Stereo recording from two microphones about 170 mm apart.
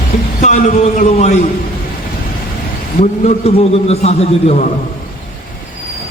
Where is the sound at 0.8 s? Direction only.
40° left (ahead or behind).